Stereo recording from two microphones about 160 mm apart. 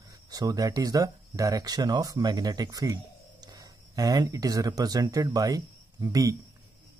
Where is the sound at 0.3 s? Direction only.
25° right (ahead or behind).